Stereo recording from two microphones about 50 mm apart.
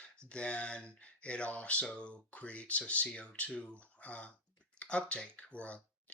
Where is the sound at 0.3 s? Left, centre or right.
Left.